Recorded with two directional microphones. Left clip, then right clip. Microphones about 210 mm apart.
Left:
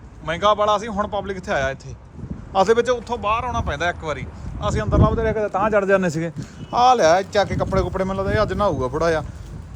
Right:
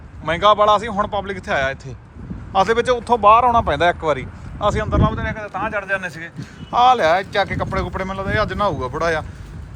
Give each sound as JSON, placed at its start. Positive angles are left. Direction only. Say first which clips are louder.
{"t": 0.3, "sound": "speech", "louder": "right 4 dB", "side_deg": 10}
{"t": 5.1, "sound": "a man's voice", "louder": "left 5 dB", "side_deg": 35}
{"t": 6.7, "sound": "speech", "louder": "right 1 dB", "side_deg": 20}